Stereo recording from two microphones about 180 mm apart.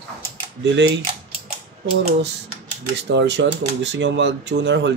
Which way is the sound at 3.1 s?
75° right (ahead or behind).